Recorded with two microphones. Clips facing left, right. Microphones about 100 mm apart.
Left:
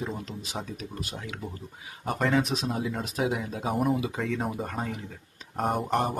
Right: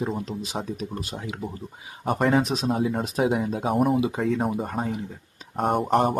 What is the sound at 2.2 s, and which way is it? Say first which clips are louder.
Speech: right 3 dB; 40° right (ahead or behind).